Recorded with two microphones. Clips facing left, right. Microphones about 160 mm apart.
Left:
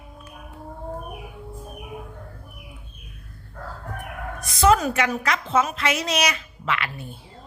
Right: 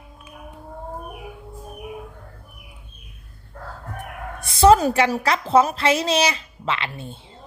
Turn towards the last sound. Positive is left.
turn(degrees=-25)  # may be behind; listen again after turning